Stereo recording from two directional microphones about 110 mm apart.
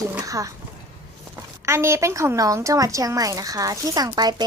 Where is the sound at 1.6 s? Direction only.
25° right (ahead or behind).